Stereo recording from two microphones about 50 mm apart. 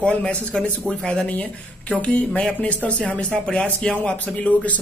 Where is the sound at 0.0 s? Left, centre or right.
Left.